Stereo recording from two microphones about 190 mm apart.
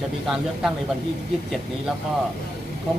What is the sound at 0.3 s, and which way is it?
Speech, centre (ahead or behind).